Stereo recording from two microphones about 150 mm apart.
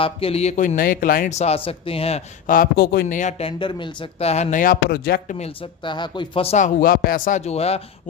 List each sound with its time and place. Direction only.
0.0 s speech: 40° left (ahead or behind); by 1.3 s 70° left (ahead or behind)
1.3 s speech: 45° left (ahead or behind)
2.5 s a man's voice: 75° left (ahead or behind); by 4.6 s 45° left (ahead or behind)
4.6 s speech: 80° left
5.4 s speech: 35° left (ahead or behind)
6.7 s speech: 75° left (ahead or behind); by 7.8 s 45° left (ahead or behind)